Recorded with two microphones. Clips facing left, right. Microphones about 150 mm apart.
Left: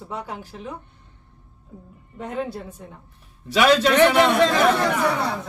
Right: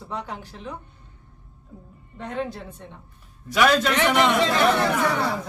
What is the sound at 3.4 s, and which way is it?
Speech, 25° left (ahead or behind).